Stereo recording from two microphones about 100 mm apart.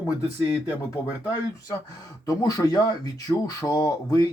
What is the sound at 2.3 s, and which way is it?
Speech, 35° left (ahead or behind).